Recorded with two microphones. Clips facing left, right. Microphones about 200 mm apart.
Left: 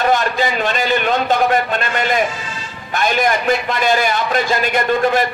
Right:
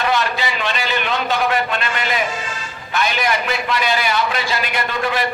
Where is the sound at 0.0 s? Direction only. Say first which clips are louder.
Left 4 dB; 45° left (ahead or behind).